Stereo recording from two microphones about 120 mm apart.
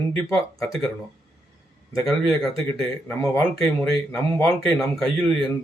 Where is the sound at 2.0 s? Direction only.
Centre (ahead or behind).